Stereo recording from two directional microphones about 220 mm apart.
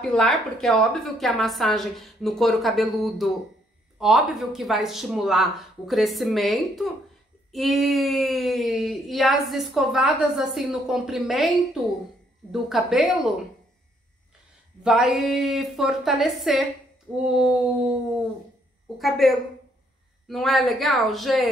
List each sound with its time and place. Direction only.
0.0 s speech: 5° left (ahead or behind)
14.8 s speech: 5° right (ahead or behind)
18.9 s speech: centre (ahead or behind)